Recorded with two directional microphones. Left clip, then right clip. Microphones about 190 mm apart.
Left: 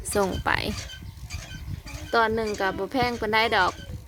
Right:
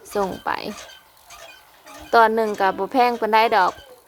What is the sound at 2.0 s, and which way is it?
Speech, 10° right (ahead or behind).